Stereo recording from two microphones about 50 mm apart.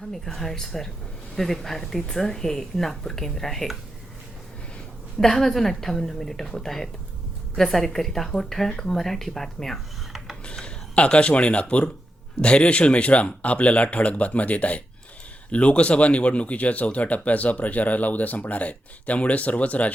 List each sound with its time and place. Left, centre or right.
0.1 s speech: centre
5.2 s speech: centre
10.4 s a sound: centre
12.4 s speech: left